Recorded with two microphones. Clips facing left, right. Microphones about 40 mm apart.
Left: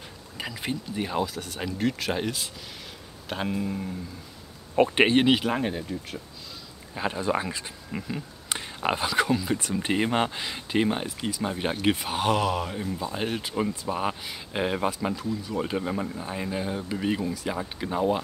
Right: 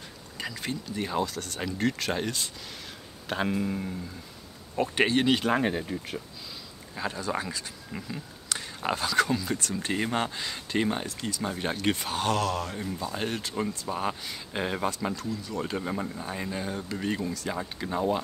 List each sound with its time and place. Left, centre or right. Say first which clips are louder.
0.4 s speech: left 2 dB; centre
4.8 s speech: left 3 dB; left
5.4 s speech: right 1 dB; centre
7.0 s speech: left 4 dB; left; by 18.2 s centre